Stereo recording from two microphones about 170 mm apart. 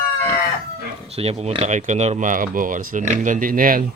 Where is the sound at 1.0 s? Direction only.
35° right (ahead or behind); by 3.8 s 55° right (ahead or behind).